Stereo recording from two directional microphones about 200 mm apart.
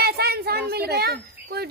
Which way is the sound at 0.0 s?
50° right (ahead or behind).